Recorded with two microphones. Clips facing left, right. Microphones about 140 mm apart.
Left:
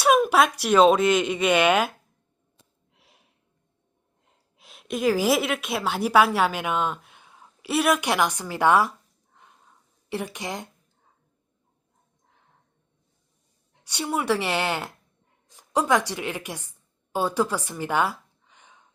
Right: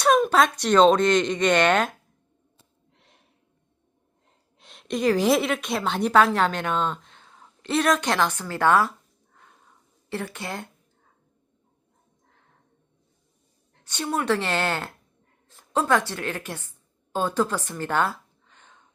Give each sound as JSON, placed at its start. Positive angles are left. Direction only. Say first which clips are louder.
{"t": 0.0, "sound": "speech", "louder": "even", "side_deg": 10}
{"t": 2.9, "sound": "gasp", "louder": "right 1 dB", "side_deg": 5}
{"t": 4.5, "sound": "a woman's voice", "louder": "right 2 dB", "side_deg": 5}
{"t": 9.3, "sound": "snort", "louder": "even", "side_deg": 15}
{"t": 10.1, "sound": "a woman's voice", "louder": "left 1 dB", "side_deg": 15}
{"t": 13.7, "sound": "a woman's voice", "louder": "even", "side_deg": 10}
{"t": 15.4, "sound": "a sound", "louder": "even", "side_deg": 15}